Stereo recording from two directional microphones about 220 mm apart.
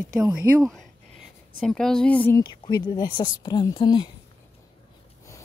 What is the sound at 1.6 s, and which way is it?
A woman's voice, 5° left (ahead or behind).